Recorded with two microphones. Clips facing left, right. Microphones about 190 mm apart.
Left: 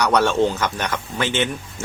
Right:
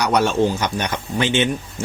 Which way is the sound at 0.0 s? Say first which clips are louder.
Even; 10° right (ahead or behind).